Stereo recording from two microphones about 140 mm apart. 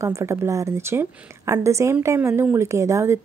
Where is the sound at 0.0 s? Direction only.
20° right (ahead or behind).